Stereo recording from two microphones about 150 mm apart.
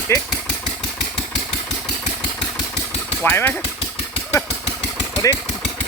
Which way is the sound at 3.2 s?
15° left (ahead or behind).